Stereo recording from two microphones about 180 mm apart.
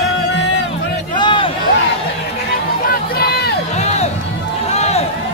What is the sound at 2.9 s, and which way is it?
Run, 60° left (ahead or behind).